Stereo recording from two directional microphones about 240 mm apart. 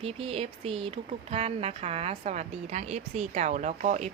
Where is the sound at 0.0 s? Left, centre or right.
Right.